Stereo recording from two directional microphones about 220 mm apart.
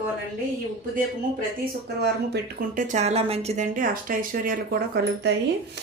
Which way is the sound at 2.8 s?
30° right (ahead or behind).